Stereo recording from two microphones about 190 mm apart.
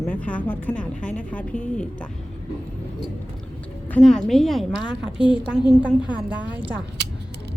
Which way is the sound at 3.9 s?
5° left (ahead or behind).